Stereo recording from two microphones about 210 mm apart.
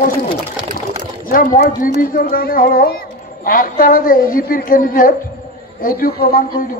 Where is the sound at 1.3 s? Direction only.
40° left (ahead or behind).